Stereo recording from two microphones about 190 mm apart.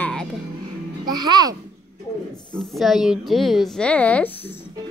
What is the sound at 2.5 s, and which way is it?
A woman's voice, centre (ahead or behind).